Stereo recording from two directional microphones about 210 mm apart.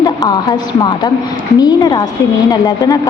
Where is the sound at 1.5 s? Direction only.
20° left (ahead or behind).